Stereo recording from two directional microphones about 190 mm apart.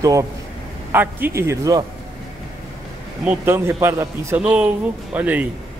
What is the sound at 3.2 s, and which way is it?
A man's voice, 10° right (ahead or behind).